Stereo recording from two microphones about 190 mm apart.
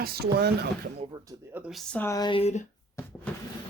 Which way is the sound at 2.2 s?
25° left (ahead or behind).